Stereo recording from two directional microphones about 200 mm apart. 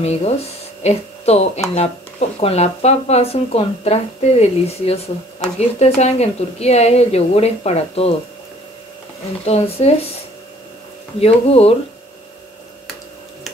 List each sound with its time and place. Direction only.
0.0 s speech: 35° left (ahead or behind)
9.5 s speech: 30° left (ahead or behind)
11.1 s speech: 30° left (ahead or behind)